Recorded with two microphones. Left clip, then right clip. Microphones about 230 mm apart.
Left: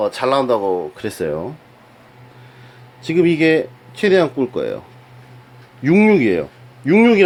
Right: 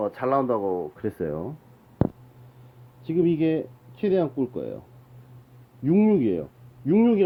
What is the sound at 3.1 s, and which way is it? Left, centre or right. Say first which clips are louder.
Speech: left 9 dB; left.